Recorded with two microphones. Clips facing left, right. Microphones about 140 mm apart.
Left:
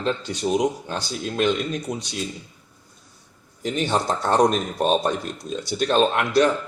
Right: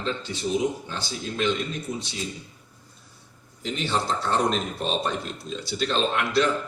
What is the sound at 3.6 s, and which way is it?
Speech, 50° left (ahead or behind).